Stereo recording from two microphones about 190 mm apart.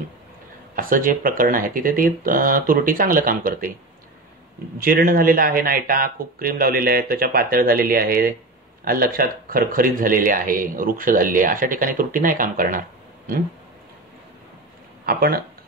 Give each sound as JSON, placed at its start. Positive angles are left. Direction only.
{"t": 0.7, "sound": "speech", "side_deg": -45}
{"t": 4.7, "sound": "speech", "side_deg": -50}
{"t": 15.0, "sound": "speech", "side_deg": -50}